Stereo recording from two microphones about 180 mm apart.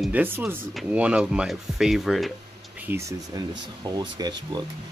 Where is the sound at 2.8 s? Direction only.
15° right (ahead or behind).